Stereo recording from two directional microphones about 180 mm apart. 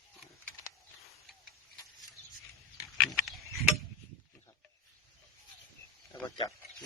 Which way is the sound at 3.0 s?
Centre (ahead or behind).